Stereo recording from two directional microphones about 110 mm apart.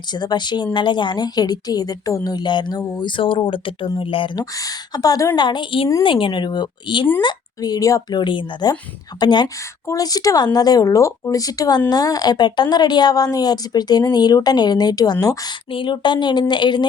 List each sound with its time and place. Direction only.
0.1 s a woman's voice: 40° left (ahead or behind)
3.1 s speech: 50° left (ahead or behind)
4.4 s a woman's voice: 35° left (ahead or behind)
5.4 s a woman's voice: 45° left (ahead or behind)
8.2 s a woman's voice: 45° left (ahead or behind)
15.7 s speech: 45° left (ahead or behind)